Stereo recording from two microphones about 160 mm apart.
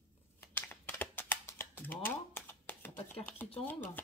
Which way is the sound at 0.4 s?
15° left (ahead or behind).